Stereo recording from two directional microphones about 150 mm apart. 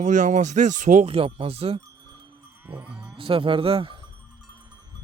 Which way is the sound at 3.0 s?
35° right (ahead or behind).